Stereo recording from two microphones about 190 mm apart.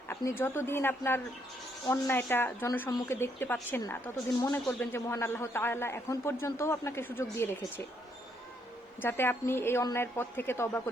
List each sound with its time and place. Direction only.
0.2 s speech: 15° left (ahead or behind)
9.0 s speech: 10° left (ahead or behind)